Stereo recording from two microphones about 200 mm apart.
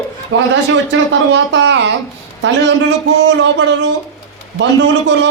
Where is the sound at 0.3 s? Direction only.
65° right (ahead or behind).